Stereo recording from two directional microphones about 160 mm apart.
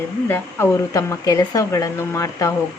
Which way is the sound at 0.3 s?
15° left (ahead or behind).